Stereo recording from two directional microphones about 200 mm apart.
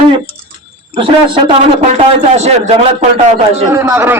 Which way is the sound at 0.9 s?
25° right (ahead or behind).